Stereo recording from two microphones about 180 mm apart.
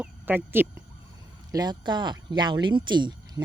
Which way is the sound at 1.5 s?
20° right (ahead or behind).